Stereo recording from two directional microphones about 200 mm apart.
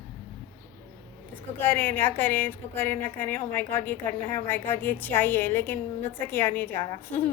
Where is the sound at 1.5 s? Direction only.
10° left (ahead or behind).